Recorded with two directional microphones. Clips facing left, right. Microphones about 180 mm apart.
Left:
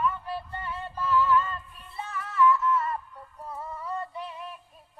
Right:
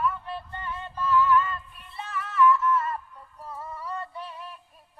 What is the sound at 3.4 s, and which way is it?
Music, 15° left (ahead or behind).